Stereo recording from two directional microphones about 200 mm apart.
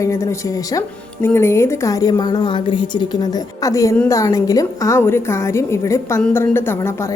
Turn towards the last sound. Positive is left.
turn(degrees=10)  # may be behind; listen again after turning